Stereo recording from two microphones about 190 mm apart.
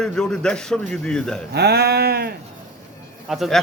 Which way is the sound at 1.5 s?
60° right (ahead or behind).